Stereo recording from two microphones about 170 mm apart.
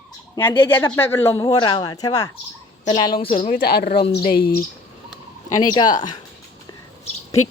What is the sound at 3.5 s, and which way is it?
Speech, 65° left (ahead or behind).